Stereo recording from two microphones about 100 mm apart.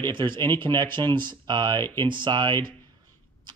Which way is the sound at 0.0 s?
50° right (ahead or behind).